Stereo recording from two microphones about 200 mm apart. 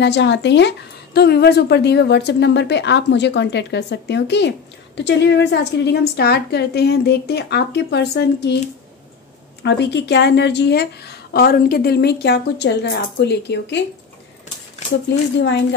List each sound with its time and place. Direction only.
0.0 s a woman's voice: 60° left (ahead or behind)
9.6 s a woman's voice: 55° left (ahead or behind)
15.0 s a woman's voice: 60° left (ahead or behind)